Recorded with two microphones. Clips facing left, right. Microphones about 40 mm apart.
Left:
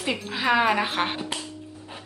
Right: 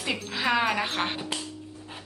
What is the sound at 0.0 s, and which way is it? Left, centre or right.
Speech, centre.